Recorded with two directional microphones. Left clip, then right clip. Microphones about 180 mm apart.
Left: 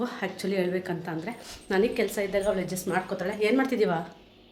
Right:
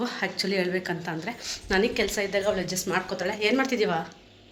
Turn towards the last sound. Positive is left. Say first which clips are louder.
# even
turn(degrees=25)  # may be behind; listen again after turning